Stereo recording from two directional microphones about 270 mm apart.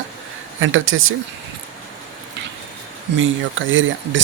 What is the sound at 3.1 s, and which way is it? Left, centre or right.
Speech, right.